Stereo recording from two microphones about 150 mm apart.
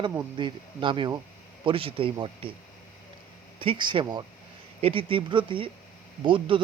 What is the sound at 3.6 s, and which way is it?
Speech, 35° right (ahead or behind).